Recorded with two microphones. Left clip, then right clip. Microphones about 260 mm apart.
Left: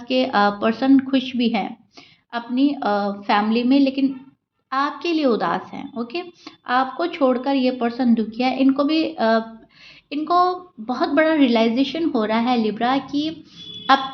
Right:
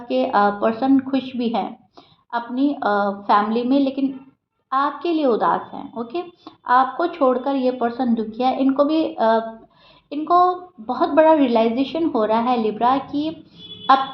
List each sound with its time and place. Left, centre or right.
0.0 s a woman's voice: left